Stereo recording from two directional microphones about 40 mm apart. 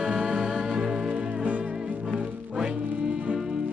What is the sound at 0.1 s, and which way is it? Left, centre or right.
Music, centre.